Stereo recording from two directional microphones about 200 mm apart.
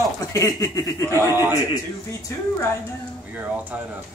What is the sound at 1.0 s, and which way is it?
Speech, 15° right (ahead or behind).